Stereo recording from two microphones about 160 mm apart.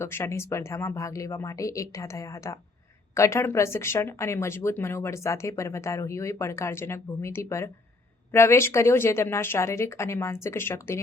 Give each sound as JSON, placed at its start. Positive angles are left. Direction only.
{"t": 0.0, "sound": "speech", "side_deg": 15}